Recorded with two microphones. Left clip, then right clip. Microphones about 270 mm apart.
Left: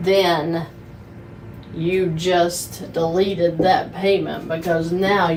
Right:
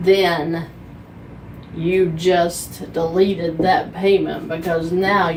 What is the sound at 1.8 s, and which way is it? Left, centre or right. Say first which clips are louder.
Speech: right 3 dB; centre.